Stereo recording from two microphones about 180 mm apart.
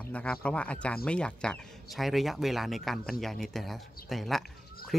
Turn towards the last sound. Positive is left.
turn(degrees=0)  # may be behind; listen again after turning